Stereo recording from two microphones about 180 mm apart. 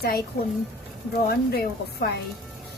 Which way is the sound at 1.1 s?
60° left (ahead or behind).